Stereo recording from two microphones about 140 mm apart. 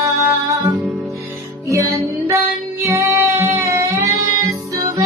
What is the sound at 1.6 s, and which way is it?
Music, 20° right (ahead or behind).